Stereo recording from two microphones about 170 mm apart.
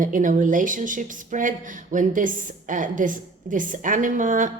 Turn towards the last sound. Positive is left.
turn(degrees=-50)  # may be behind; listen again after turning